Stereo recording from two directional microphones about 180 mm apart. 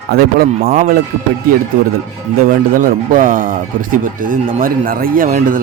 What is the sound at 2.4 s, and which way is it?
Speech, 50° right (ahead or behind).